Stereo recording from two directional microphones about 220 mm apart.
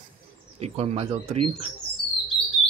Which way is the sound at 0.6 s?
30° right (ahead or behind).